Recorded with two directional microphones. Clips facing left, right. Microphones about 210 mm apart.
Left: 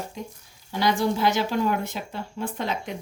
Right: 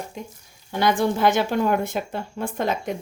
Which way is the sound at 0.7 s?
55° right (ahead or behind).